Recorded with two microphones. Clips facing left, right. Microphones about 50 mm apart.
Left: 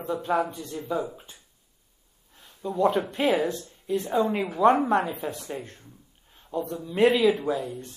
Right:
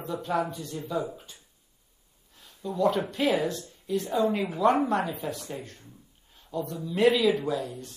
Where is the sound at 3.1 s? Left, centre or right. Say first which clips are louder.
Left 2 dB; left.